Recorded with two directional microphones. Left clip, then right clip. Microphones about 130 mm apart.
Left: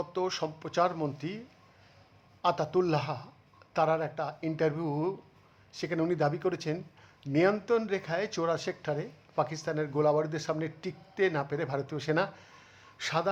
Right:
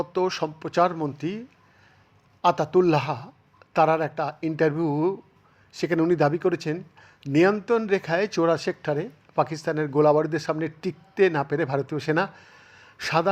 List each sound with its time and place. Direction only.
0.0 s speech: 30° right (ahead or behind)
2.4 s speech: 30° right (ahead or behind)
7.0 s a sound: 35° right (ahead or behind)
7.6 s speech: 30° right (ahead or behind)